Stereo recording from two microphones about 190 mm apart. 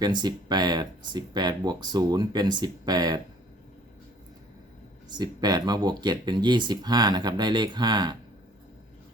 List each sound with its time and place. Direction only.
0.0 s speech: 20° right (ahead or behind)
5.0 s speech: 20° right (ahead or behind)